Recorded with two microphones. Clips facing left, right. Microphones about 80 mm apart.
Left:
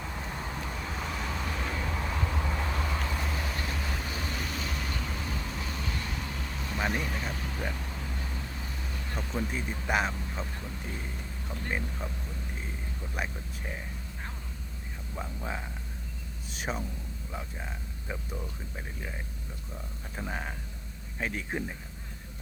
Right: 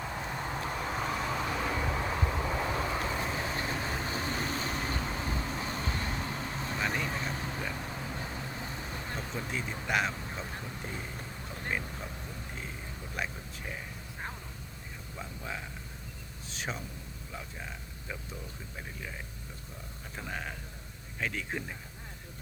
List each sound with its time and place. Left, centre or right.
0.0 s vehicle: centre; by 6.7 s right
6.7 s vehicle: centre
7.0 s vehicle: right
9.3 s speech: centre
13.1 s speech: centre
16.5 s a sound: centre
20.1 s speech: centre